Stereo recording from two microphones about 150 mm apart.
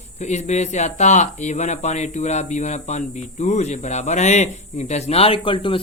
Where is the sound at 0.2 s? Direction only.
50° left (ahead or behind).